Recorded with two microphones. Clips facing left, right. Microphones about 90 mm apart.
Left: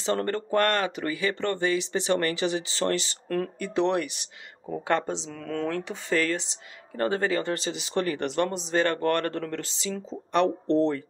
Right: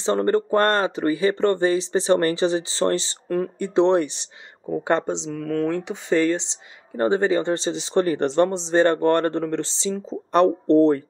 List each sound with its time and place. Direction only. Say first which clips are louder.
0.0 s speech: right 7 dB; 25° right (ahead or behind)
5.3 s speech: right 7 dB; 5° right (ahead or behind)
5.8 s speech: right 6 dB; 20° right (ahead or behind)
10.3 s speech: right 7 dB; 40° right (ahead or behind)